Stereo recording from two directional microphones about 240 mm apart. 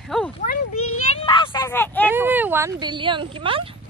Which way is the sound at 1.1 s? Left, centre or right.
Left.